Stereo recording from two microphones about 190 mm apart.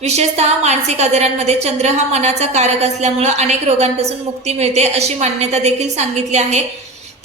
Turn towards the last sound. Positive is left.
turn(degrees=-35)  # may be behind; listen again after turning